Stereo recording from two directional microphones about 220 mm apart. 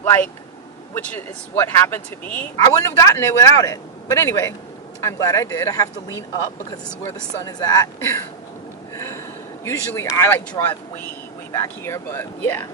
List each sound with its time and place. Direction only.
0.0 s speech: 10° left (ahead or behind)
8.9 s a sound: 15° left (ahead or behind)
9.7 s speech: 10° left (ahead or behind)